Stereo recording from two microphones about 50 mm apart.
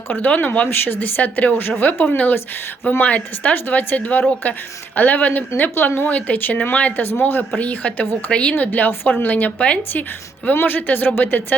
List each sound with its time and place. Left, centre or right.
0.1 s a woman's voice: left
6.1 s a woman's voice: left
7.0 s speech: left
7.6 s a woman's voice: left
8.5 s a woman's voice: left